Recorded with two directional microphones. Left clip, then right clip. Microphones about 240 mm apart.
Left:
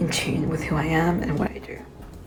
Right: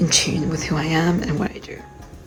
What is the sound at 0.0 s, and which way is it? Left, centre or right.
Speech, centre.